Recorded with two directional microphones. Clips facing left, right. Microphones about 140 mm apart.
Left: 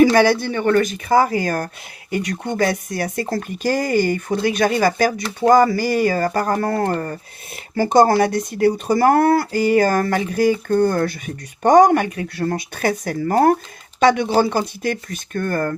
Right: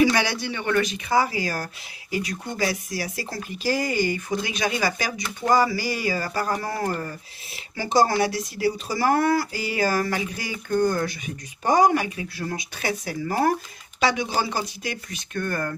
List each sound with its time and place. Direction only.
0.0 s speech: 50° left (ahead or behind)